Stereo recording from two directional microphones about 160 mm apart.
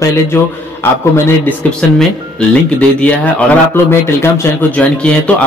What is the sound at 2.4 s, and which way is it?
Speech, 5° left (ahead or behind).